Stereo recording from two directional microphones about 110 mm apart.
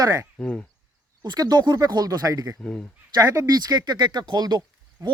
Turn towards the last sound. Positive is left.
turn(degrees=-35)  # may be behind; listen again after turning